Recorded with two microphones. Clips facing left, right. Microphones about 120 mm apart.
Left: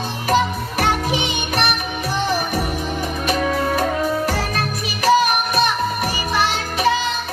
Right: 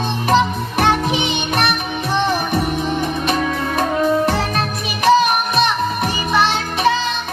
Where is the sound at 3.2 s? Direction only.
25° right (ahead or behind).